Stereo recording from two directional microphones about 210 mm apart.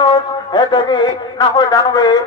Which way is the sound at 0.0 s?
20° left (ahead or behind).